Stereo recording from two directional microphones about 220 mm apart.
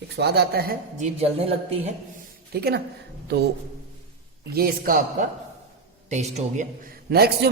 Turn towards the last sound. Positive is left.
turn(degrees=-45)  # may be behind; listen again after turning